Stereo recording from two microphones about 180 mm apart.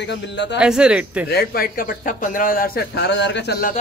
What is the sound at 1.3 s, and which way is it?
Speech, 60° left (ahead or behind).